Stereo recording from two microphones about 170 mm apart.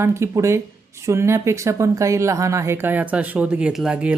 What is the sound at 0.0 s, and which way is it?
Speech, 15° right (ahead or behind).